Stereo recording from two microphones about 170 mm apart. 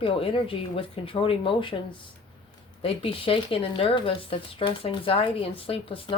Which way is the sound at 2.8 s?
35° left (ahead or behind).